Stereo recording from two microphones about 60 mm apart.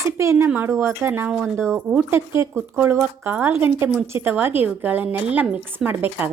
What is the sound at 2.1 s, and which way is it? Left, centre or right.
Speech, right.